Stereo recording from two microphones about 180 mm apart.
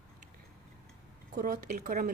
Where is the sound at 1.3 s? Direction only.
55° right (ahead or behind).